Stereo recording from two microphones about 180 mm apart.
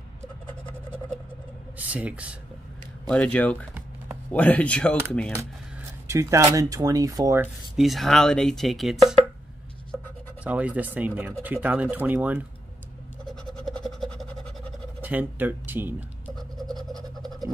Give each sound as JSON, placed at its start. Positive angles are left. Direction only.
{"t": 1.8, "sound": "speech", "side_deg": -10}
{"t": 3.1, "sound": "speech", "side_deg": 5}
{"t": 6.0, "sound": "speech", "side_deg": -15}
{"t": 7.7, "sound": "speech", "side_deg": 0}
{"t": 10.4, "sound": "speech", "side_deg": -10}
{"t": 13.3, "sound": "a sound", "side_deg": 0}
{"t": 15.0, "sound": "speech", "side_deg": -10}
{"t": 16.3, "sound": "scratch", "side_deg": 0}